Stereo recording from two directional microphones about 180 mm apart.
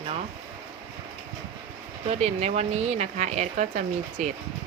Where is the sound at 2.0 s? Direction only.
35° right (ahead or behind).